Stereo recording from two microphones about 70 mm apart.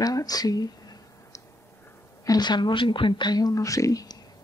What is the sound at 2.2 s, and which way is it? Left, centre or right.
Speech, left.